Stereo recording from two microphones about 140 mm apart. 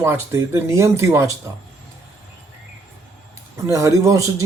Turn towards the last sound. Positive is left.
turn(degrees=-25)  # may be behind; listen again after turning